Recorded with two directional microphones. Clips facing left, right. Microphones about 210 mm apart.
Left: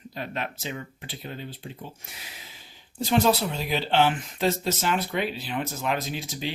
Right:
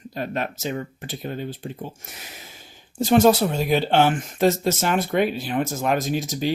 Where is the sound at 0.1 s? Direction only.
45° right (ahead or behind).